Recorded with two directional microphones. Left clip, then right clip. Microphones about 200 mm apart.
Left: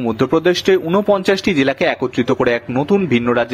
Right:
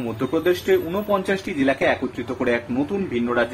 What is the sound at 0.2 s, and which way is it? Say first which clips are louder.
Speech: left 6 dB; 45° left (ahead or behind).